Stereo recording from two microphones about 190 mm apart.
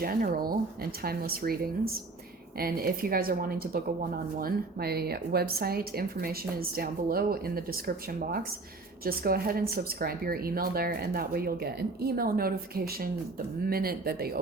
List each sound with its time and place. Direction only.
0.0 s a woman's voice: 50° right (ahead or behind)